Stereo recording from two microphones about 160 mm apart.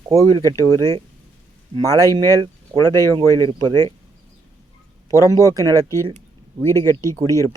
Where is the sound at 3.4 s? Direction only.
25° right (ahead or behind).